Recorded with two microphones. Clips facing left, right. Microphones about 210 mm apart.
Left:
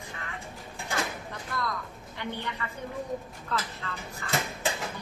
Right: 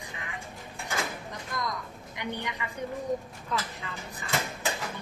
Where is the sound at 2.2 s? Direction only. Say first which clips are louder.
Even; 15° right (ahead or behind).